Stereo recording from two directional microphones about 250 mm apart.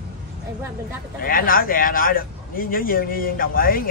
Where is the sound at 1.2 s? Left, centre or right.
Left.